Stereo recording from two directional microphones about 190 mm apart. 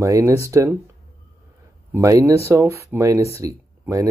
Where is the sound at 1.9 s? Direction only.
15° right (ahead or behind).